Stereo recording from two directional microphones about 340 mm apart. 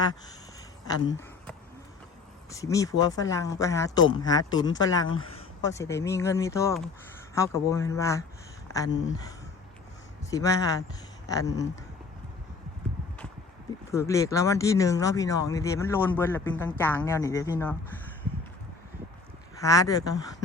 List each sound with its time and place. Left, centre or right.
2.5 s speech: centre
13.9 s speech: centre
19.6 s speech: centre